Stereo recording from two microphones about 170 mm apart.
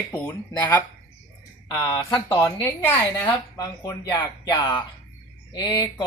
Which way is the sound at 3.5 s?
20° left (ahead or behind).